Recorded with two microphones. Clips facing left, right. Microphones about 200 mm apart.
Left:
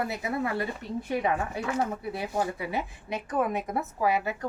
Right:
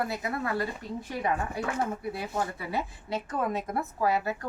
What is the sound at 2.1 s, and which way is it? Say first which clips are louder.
A woman's voice: left 2 dB; 20° left (ahead or behind).